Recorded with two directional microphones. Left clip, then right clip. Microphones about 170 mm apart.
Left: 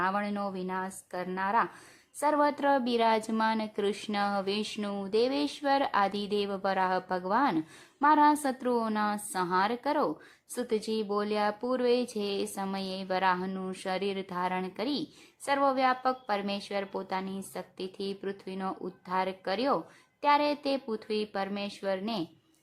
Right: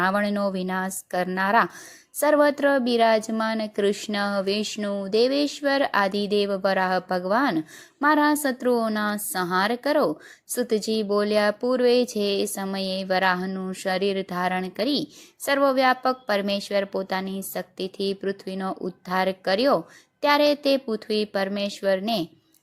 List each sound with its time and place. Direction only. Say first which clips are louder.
0.0 s a woman's voice: right 8 dB; 25° right (ahead or behind)